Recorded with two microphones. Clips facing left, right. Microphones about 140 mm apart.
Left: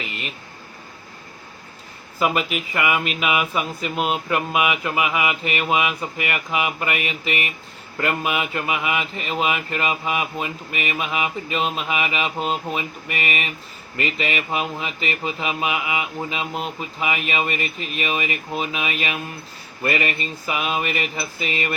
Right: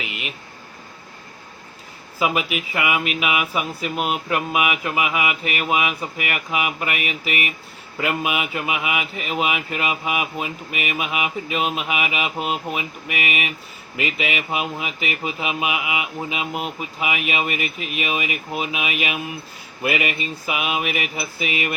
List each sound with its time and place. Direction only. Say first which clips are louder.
0.0 s vehicle: even; 5° right (ahead or behind)
2.1 s speech: left 1 dB; 5° right (ahead or behind)